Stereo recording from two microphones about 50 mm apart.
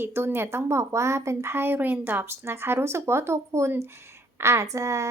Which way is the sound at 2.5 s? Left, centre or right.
Right.